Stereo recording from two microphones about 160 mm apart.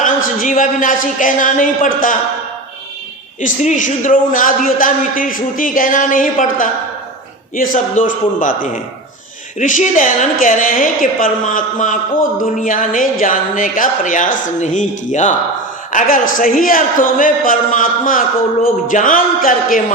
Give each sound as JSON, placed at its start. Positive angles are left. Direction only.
{"t": 0.0, "sound": "speech", "side_deg": 55}
{"t": 3.4, "sound": "a man's voice", "side_deg": 50}